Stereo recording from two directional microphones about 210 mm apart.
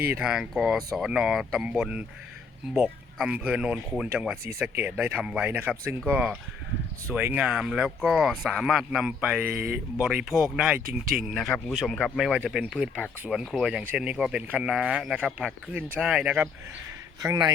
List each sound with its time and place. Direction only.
0.1 s speech: 5° right (ahead or behind)